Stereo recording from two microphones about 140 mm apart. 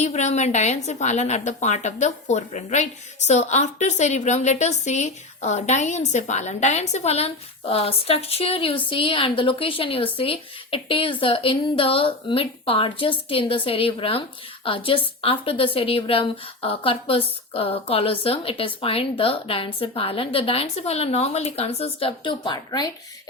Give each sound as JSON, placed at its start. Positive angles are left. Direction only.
{"t": 0.0, "sound": "a woman's voice", "side_deg": 55}